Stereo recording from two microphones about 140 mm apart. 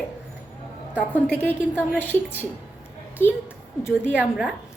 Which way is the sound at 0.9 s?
10° left (ahead or behind).